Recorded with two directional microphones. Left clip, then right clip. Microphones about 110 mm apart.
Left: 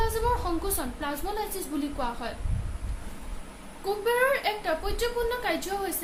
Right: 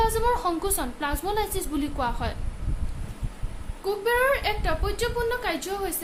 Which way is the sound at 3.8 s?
45° right (ahead or behind).